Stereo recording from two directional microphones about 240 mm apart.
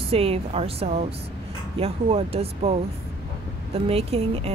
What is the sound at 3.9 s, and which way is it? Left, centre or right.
Speech, right.